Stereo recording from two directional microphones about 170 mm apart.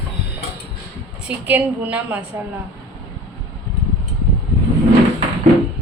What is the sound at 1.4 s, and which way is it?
Speech, 10° right (ahead or behind).